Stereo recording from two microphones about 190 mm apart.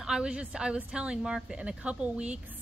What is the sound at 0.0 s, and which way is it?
A woman's voice, 5° right (ahead or behind).